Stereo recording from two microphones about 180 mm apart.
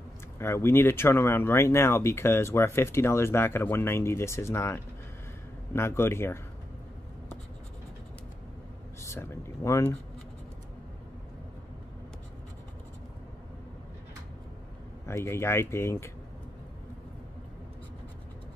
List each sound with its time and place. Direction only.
0.4 s speech: 15° left (ahead or behind)
9.0 s speech: 15° left (ahead or behind)
15.0 s speech: 15° left (ahead or behind)